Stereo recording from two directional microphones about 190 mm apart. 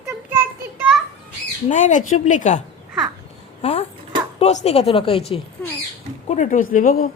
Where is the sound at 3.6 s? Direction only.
35° left (ahead or behind).